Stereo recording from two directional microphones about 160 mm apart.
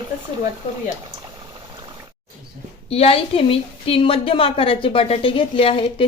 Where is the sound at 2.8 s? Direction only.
40° left (ahead or behind).